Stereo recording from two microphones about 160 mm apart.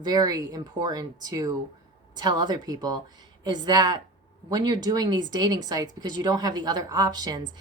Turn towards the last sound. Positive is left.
turn(degrees=-25)  # may be behind; listen again after turning